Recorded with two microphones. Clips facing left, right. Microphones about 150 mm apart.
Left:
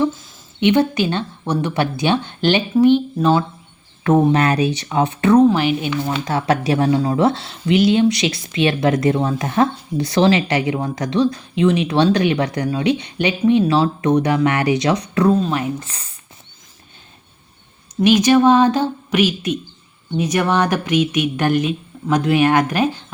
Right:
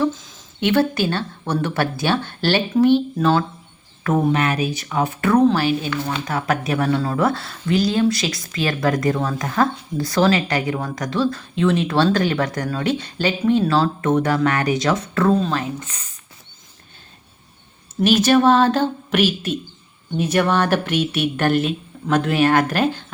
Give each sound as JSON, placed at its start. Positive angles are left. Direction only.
{"t": 0.6, "sound": "speech", "side_deg": 15}
{"t": 4.0, "sound": "speech", "side_deg": 30}
{"t": 6.5, "sound": "speech", "side_deg": 30}
{"t": 6.9, "sound": "speech", "side_deg": 20}
{"t": 15.3, "sound": "speech", "side_deg": 5}
{"t": 15.8, "sound": "speech", "side_deg": 30}
{"t": 18.0, "sound": "speech", "side_deg": 15}